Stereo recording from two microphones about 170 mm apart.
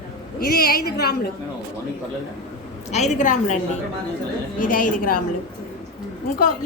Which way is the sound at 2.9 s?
45° left (ahead or behind).